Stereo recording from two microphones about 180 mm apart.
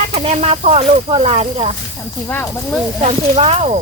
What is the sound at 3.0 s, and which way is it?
Speech, 35° right (ahead or behind).